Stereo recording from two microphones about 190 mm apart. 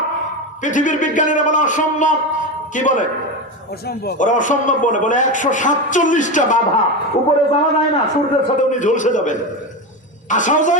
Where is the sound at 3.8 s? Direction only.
55° left (ahead or behind).